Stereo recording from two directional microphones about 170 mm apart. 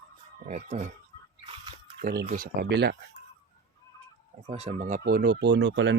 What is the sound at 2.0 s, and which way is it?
Speech, 55° right (ahead or behind).